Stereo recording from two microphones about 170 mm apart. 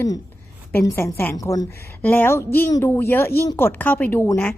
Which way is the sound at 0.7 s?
15° left (ahead or behind).